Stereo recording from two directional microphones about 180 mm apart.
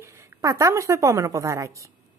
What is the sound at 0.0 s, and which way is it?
A woman's voice, 15° right (ahead or behind).